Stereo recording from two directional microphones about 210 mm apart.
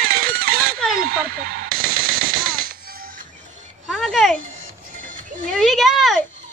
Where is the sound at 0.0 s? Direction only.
45° right (ahead or behind).